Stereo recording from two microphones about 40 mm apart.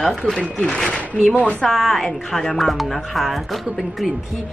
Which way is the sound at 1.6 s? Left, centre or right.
Centre.